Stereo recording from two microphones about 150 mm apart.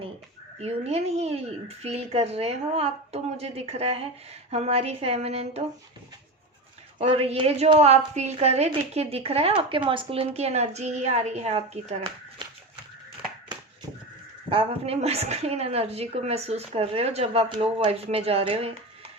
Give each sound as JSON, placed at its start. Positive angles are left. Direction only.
{"t": 0.6, "sound": "a woman's voice", "side_deg": -45}
{"t": 7.0, "sound": "a woman's voice", "side_deg": -40}
{"t": 14.5, "sound": "a woman's voice", "side_deg": -40}